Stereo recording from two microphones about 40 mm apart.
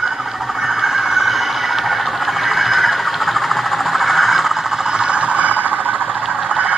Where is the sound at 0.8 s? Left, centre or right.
Centre.